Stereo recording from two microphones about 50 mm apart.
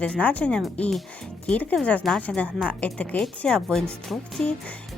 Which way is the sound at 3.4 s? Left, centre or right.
Centre.